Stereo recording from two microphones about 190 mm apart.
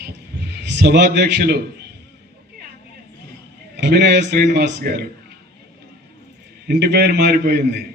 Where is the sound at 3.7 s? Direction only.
65° right (ahead or behind).